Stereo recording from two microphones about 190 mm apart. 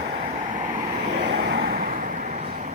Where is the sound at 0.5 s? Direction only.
40° right (ahead or behind).